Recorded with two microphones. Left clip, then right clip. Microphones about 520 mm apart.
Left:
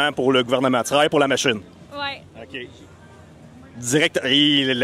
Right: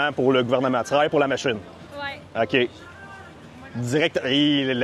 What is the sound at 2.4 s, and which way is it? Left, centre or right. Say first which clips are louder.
Speech: right 14 dB; right.